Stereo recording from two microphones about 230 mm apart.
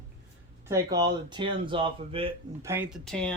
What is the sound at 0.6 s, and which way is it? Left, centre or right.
Speech, centre.